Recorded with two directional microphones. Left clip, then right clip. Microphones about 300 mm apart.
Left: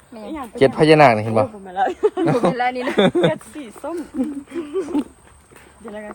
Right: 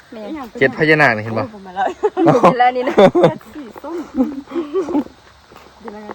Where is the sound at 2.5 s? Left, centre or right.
Right.